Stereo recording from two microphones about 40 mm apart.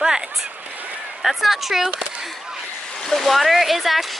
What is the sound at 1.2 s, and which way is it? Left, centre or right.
Speech, centre.